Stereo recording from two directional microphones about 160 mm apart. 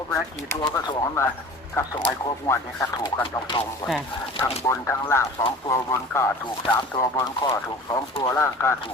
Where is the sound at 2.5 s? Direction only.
20° left (ahead or behind).